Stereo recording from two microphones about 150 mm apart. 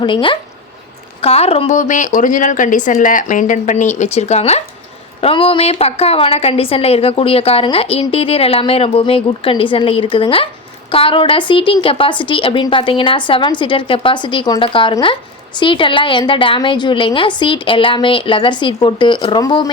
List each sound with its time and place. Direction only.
0.0 s a woman's voice: 35° left (ahead or behind)
1.7 s a woman's voice: 55° left (ahead or behind); by 19.7 s 30° left (ahead or behind)